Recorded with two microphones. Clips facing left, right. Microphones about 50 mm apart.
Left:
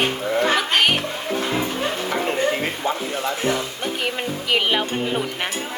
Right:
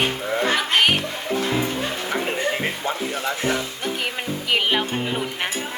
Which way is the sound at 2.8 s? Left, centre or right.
Left.